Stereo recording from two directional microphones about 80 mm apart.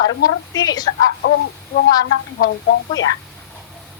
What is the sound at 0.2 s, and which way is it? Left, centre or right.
Speech, left.